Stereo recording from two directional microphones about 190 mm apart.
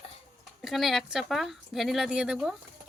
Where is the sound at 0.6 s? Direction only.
Centre (ahead or behind).